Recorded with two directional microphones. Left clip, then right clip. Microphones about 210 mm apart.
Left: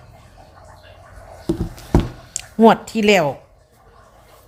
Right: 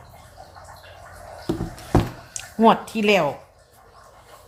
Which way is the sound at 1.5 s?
35° left (ahead or behind).